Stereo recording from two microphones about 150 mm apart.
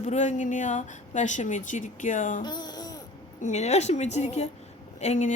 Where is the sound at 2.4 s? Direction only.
30° left (ahead or behind).